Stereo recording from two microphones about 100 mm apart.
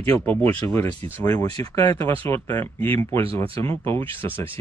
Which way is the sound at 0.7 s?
25° left (ahead or behind).